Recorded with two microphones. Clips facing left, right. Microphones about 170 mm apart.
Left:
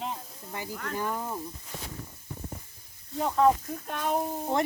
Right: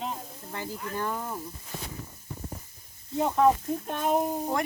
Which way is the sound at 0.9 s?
10° left (ahead or behind).